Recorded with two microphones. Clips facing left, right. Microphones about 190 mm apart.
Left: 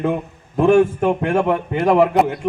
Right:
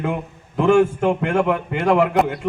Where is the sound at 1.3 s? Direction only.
25° left (ahead or behind).